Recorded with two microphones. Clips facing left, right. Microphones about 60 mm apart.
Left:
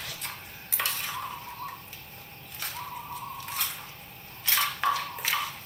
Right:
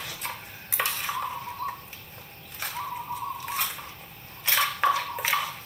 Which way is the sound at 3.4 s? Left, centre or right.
Right.